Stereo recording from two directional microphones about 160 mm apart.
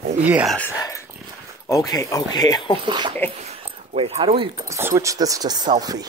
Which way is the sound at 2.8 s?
30° right (ahead or behind).